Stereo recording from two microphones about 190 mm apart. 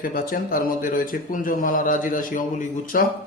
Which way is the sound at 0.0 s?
45° left (ahead or behind).